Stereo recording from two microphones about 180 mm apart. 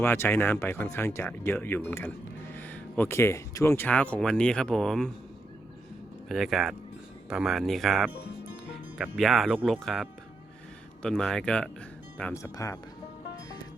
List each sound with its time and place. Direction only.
0.0 s speech: 15° left (ahead or behind)
6.2 s speech: centre (ahead or behind)
9.6 s speech: 10° right (ahead or behind)
9.8 s speech: centre (ahead or behind)
12.4 s speech: 15° left (ahead or behind)